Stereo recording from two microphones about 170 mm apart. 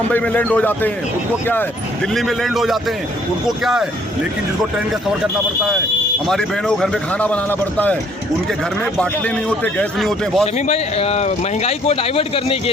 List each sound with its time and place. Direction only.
0.1 s speech: 10° left (ahead or behind)
2.1 s speech: centre (ahead or behind)
6.2 s speech: centre (ahead or behind)
8.8 s speech: 5° left (ahead or behind)
10.4 s speech: 35° left (ahead or behind)